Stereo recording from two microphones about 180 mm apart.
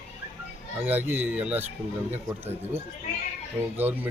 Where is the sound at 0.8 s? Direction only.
10° right (ahead or behind).